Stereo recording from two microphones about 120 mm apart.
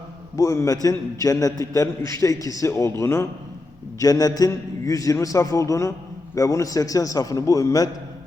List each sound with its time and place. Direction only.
0.3 s a man's voice: 25° left (ahead or behind)